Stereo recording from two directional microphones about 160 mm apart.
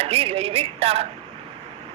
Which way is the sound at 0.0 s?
40° right (ahead or behind).